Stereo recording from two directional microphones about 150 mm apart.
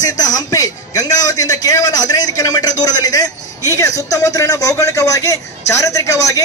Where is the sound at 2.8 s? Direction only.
25° left (ahead or behind).